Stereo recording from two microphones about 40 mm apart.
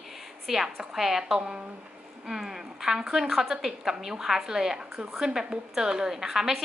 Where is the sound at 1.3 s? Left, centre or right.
Right.